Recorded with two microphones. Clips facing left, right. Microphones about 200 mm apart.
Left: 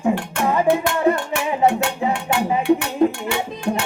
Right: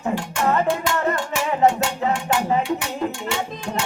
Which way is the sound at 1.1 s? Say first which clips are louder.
Left 1 dB; 60° left (ahead or behind).